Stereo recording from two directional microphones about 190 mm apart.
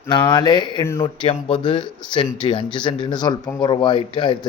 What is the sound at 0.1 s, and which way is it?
Speech, 25° left (ahead or behind).